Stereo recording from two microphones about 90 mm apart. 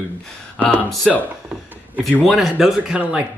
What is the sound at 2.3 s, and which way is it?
Speech, 5° right (ahead or behind).